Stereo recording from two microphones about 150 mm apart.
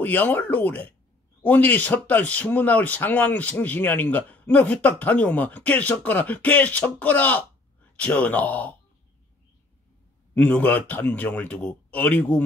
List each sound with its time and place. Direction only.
0.0 s speech: 10° left (ahead or behind)
10.3 s speech: 10° left (ahead or behind)